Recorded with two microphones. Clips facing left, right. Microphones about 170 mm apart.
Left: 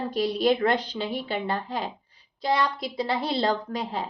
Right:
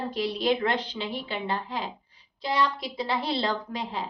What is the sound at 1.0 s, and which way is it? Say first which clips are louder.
A woman's voice: left 3 dB; 45° left (ahead or behind).